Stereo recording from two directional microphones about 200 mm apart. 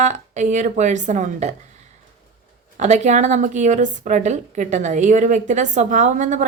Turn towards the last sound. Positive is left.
turn(degrees=-40)  # may be behind; listen again after turning